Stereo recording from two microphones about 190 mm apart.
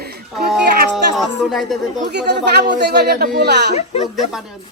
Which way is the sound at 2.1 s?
60° right (ahead or behind).